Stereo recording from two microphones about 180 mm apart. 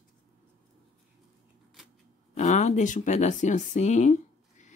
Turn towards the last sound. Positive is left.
turn(degrees=40)  # may be behind; listen again after turning